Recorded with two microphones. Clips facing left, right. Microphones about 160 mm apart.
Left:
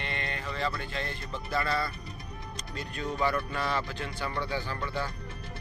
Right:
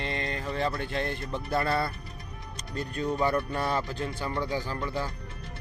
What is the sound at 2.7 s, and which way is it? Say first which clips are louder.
Speech: right 4 dB; 40° right (ahead or behind).